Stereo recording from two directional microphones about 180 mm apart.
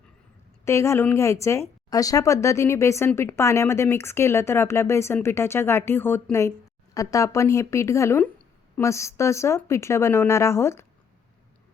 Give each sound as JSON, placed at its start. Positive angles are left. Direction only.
{"t": 0.6, "sound": "speech", "side_deg": 15}